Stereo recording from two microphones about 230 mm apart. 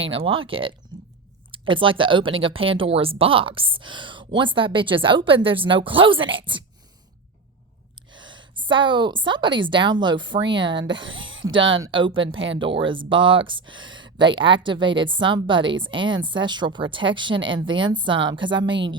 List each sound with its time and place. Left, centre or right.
0.0 s speech: right
8.1 s speech: centre
11.2 s a sound: right
11.6 s speech: right
11.9 s speech: right